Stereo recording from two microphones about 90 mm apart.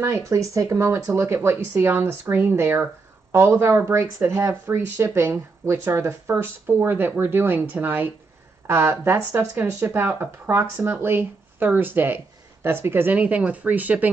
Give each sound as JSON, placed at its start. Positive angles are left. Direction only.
{"t": 0.0, "sound": "speech", "side_deg": -30}